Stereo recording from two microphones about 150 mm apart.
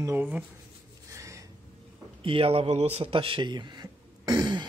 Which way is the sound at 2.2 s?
35° right (ahead or behind).